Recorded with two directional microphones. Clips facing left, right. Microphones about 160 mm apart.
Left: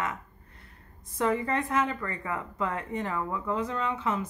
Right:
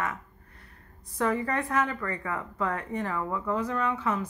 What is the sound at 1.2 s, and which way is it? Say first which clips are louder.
A woman's voice: even; 20° left (ahead or behind).